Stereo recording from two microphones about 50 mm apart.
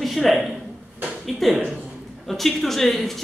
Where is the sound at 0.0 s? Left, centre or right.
Centre.